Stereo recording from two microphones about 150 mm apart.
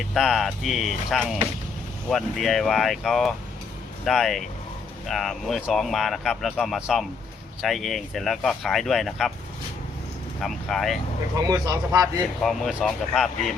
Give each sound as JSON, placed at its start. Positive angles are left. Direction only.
{"t": 0.0, "sound": "speech", "side_deg": 0}
{"t": 10.4, "sound": "speech", "side_deg": 0}
{"t": 11.4, "sound": "speech", "side_deg": -25}
{"t": 12.4, "sound": "speech", "side_deg": 0}